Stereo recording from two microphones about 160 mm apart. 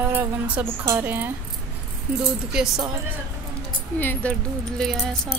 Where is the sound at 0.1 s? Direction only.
15° right (ahead or behind).